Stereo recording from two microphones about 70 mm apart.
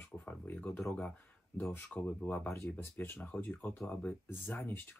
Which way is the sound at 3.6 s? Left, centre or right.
Left.